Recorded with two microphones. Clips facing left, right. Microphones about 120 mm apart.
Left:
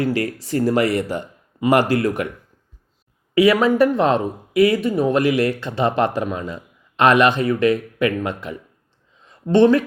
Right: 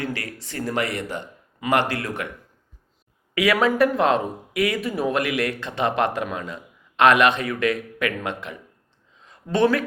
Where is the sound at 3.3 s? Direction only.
30° left (ahead or behind).